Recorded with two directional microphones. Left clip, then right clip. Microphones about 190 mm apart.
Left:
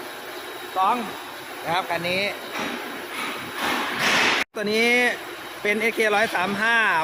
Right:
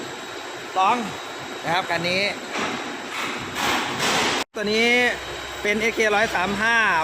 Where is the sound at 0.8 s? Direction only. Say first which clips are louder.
Right 2 dB; 5° right (ahead or behind).